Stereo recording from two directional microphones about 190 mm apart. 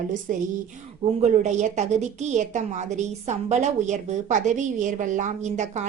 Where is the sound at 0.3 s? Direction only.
45° right (ahead or behind).